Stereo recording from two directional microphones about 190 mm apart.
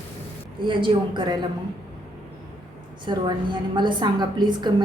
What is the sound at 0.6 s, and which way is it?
Speech, 25° right (ahead or behind).